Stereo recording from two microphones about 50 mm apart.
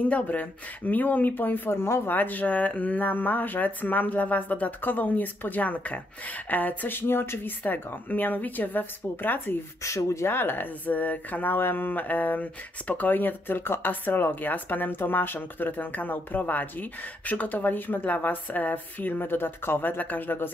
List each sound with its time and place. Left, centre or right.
0.1 s speech: left
1.8 s speech: left
2.1 s speech: left
9.8 s speech: left
10.3 s speech: left